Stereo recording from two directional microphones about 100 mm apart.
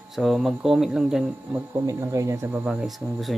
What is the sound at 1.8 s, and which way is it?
Speech, 30° right (ahead or behind).